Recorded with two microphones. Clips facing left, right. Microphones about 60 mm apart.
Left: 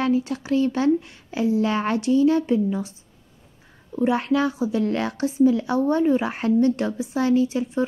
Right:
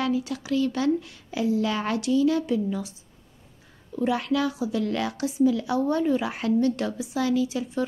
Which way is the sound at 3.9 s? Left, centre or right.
Left.